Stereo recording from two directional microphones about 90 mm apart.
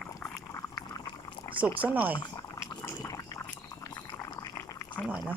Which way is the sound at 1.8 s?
15° right (ahead or behind).